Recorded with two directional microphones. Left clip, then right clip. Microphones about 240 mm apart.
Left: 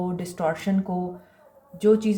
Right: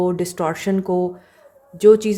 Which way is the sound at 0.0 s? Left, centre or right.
Right.